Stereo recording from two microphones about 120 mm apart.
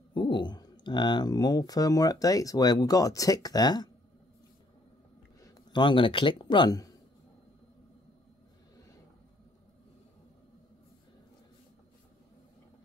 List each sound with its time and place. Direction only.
0.1 s speech: 40° left (ahead or behind)
5.4 s a sound: 30° left (ahead or behind)
5.8 s speech: 45° left (ahead or behind)